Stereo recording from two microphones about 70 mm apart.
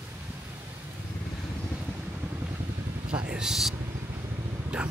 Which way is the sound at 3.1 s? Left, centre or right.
Centre.